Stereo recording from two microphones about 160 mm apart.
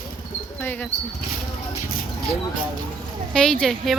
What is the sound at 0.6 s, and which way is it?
Speech, 10° left (ahead or behind).